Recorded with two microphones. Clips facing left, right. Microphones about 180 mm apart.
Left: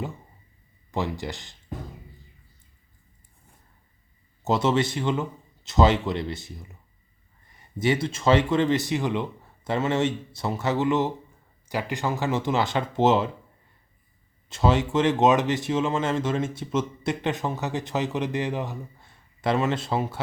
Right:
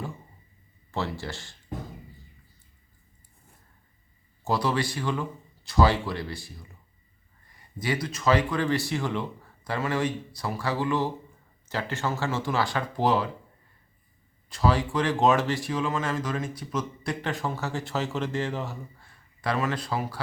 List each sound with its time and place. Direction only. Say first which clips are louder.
0.9 s speech: left 3 dB; 15° left (ahead or behind)
4.4 s speech: left 4 dB; 25° left (ahead or behind)
14.5 s speech: left 3 dB; 25° left (ahead or behind)